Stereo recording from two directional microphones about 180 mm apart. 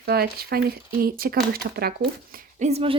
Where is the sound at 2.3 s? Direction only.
40° right (ahead or behind).